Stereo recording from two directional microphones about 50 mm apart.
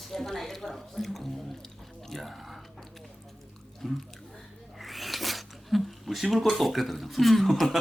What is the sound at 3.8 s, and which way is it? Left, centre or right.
Speech, centre.